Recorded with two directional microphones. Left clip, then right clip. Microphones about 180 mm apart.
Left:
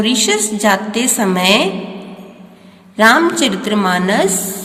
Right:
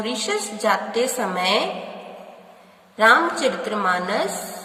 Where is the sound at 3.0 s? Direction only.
20° left (ahead or behind).